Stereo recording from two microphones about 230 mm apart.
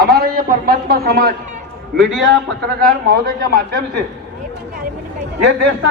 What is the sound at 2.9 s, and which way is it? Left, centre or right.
Speech, right.